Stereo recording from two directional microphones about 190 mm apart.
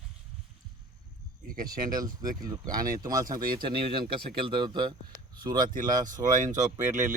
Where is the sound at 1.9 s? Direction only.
20° right (ahead or behind).